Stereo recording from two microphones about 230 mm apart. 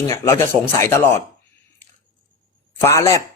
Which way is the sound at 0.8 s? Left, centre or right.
Centre.